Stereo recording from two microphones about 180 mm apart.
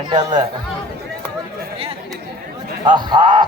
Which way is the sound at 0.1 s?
25° right (ahead or behind).